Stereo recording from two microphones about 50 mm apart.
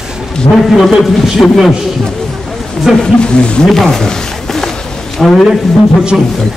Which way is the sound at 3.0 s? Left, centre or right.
Centre.